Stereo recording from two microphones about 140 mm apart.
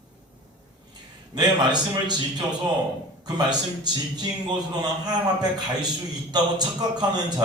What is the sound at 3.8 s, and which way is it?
A man's voice, 30° right (ahead or behind).